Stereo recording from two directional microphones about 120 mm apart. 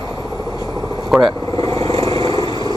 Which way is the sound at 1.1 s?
Centre (ahead or behind).